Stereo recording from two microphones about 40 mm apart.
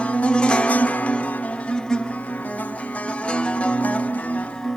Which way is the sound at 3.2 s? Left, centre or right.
Left.